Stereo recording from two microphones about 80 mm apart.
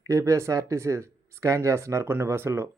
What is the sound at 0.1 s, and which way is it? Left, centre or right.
Speech, right.